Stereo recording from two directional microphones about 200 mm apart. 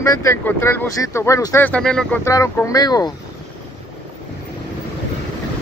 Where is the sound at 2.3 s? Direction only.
15° left (ahead or behind).